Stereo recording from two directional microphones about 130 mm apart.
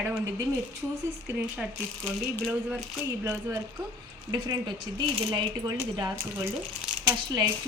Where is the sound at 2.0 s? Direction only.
5° left (ahead or behind).